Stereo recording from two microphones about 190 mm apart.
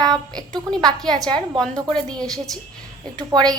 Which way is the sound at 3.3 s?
20° right (ahead or behind).